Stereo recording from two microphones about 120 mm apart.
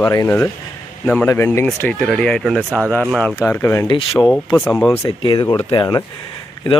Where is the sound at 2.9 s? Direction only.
10° left (ahead or behind).